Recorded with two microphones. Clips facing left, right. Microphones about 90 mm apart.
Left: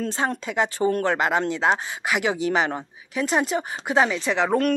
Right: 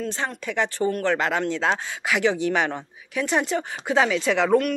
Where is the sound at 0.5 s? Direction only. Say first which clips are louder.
Even; 15° left (ahead or behind).